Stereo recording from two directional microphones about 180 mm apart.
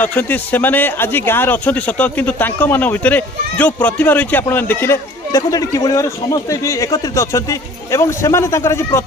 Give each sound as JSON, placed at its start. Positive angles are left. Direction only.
{"t": 0.0, "sound": "speech", "side_deg": 10}